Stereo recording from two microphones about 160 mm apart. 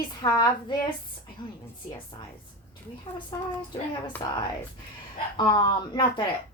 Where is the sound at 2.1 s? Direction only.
25° left (ahead or behind).